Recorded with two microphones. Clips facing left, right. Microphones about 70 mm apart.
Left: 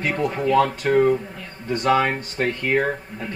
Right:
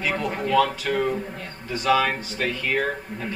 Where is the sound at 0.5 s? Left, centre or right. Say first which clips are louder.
Left 3 dB; left.